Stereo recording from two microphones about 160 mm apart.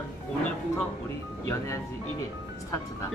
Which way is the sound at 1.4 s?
20° left (ahead or behind).